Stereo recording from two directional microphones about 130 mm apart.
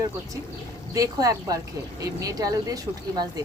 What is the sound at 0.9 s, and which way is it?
Speech, 25° right (ahead or behind).